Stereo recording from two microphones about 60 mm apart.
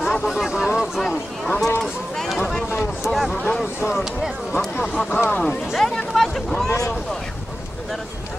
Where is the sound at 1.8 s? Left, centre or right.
Centre.